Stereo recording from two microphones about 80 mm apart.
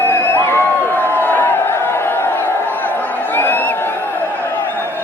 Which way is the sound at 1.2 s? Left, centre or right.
Left.